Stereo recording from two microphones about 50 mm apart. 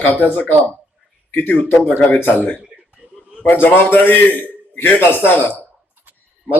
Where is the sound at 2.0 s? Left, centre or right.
Left.